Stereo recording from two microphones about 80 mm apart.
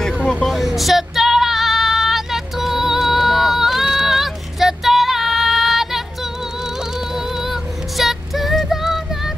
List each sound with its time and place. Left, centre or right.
0.5 s female singing: centre
7.2 s music: centre
8.0 s child singing: centre